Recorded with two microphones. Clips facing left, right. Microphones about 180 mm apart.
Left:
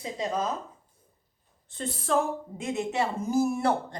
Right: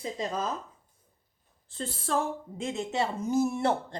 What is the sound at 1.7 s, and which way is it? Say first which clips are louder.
Speech: left 3 dB; 30° right (ahead or behind).